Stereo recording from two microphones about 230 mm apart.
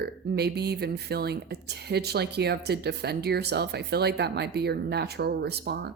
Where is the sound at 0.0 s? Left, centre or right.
Right.